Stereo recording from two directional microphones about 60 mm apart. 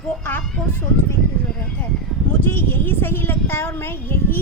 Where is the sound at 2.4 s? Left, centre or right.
Left.